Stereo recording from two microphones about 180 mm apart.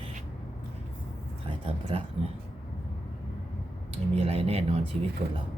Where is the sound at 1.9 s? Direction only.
30° right (ahead or behind).